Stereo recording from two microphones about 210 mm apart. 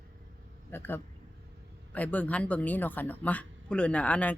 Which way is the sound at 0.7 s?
10° left (ahead or behind).